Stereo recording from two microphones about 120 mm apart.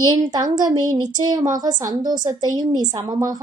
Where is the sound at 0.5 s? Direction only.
35° right (ahead or behind).